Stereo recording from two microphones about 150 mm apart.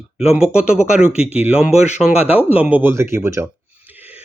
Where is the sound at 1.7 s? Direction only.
50° left (ahead or behind).